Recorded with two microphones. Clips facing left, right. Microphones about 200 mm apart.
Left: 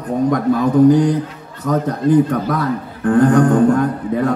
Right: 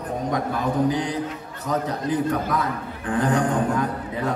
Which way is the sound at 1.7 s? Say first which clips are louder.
Left 9 dB; 50° left (ahead or behind).